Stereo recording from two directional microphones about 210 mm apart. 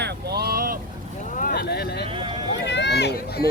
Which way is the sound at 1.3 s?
45° left (ahead or behind).